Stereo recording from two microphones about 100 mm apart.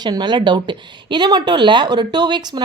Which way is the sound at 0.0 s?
45° right (ahead or behind).